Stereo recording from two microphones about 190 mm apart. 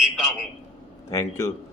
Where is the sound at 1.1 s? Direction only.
15° left (ahead or behind).